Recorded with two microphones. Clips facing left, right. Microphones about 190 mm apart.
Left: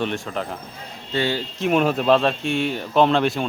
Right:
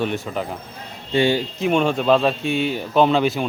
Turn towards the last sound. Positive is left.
turn(degrees=0)  # may be behind; listen again after turning